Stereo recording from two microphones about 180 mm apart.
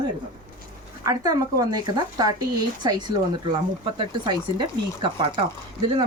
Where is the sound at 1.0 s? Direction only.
20° right (ahead or behind).